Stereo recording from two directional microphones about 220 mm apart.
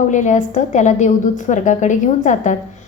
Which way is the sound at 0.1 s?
35° left (ahead or behind).